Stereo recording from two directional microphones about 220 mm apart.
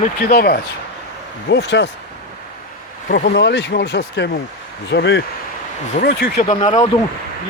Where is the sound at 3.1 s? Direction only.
45° left (ahead or behind).